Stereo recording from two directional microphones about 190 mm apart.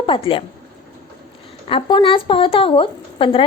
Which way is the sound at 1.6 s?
25° left (ahead or behind).